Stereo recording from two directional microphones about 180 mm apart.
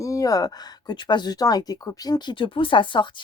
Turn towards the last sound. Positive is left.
turn(degrees=25)  # may be behind; listen again after turning